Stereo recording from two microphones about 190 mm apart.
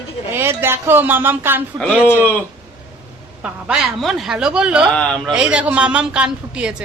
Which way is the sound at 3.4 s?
5° right (ahead or behind).